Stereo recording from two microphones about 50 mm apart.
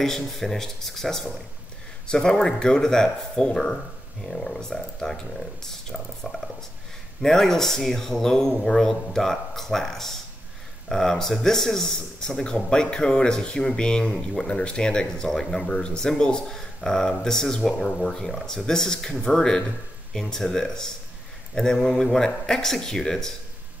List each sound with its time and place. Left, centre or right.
0.0 s speech: centre
14.1 s speech: centre
14.5 s speech: centre